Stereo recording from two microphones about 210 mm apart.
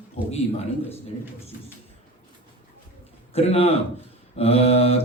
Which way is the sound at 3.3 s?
30° left (ahead or behind).